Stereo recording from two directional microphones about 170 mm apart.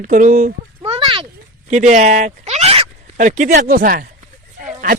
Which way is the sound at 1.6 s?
45° right (ahead or behind).